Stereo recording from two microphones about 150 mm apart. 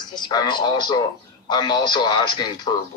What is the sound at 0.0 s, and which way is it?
Speech, 30° left (ahead or behind).